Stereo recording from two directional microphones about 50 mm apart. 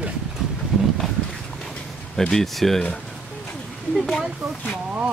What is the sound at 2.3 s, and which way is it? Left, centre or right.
Speech, centre.